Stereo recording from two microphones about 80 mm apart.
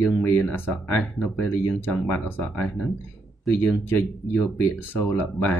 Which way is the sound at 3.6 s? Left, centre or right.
Left.